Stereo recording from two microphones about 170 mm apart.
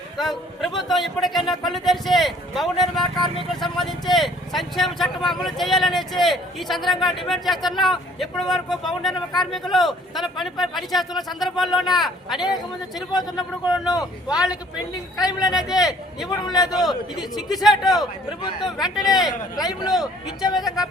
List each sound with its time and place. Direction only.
0.2 s speech: centre (ahead or behind)
15.2 s a man's voice: 20° left (ahead or behind)
15.8 s speech: centre (ahead or behind)
16.5 s a man's voice: 20° left (ahead or behind)
16.7 s speech: centre (ahead or behind)
18.9 s a man's voice: 20° left (ahead or behind)
20.5 s speech: centre (ahead or behind)